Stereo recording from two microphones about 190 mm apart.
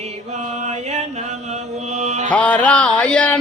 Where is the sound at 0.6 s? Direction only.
35° right (ahead or behind).